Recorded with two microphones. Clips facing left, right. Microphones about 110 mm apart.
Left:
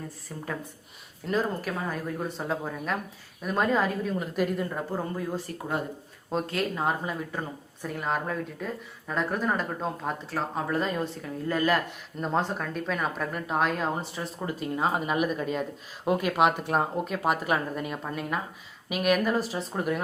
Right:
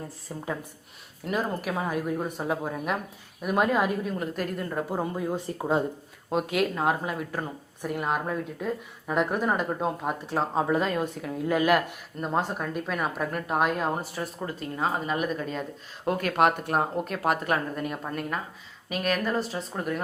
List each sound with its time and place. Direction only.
0.3 s speech: 20° right (ahead or behind)
4.1 s a woman's voice: centre (ahead or behind)
4.9 s speech: 15° right (ahead or behind)
6.3 s a woman's voice: 5° right (ahead or behind)
10.8 s a woman's voice: centre (ahead or behind)
14.8 s a woman's voice: 10° left (ahead or behind)